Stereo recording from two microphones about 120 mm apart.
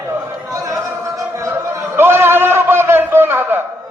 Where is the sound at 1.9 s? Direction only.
20° right (ahead or behind).